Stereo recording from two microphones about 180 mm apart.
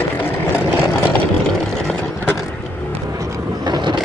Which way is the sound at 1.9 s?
10° left (ahead or behind).